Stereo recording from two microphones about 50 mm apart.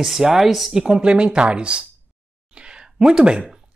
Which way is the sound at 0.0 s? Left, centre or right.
Centre.